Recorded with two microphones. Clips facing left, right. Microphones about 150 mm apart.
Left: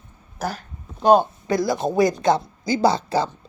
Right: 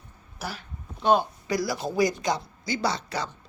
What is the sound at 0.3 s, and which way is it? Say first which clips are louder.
Speech: left 8 dB; 45° left (ahead or behind).